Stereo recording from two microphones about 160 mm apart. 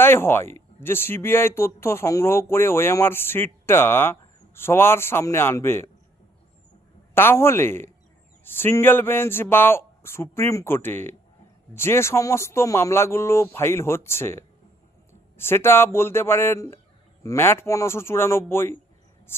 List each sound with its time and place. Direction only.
0.0 s speech: 15° left (ahead or behind)
7.1 s speech: 15° left (ahead or behind)
19.3 s cricket: 15° left (ahead or behind)